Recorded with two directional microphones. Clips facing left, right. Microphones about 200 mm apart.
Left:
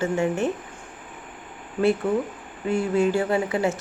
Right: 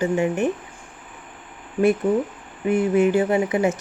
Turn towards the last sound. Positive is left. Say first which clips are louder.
# right 3 dB
turn(degrees=-20)  # may be behind; listen again after turning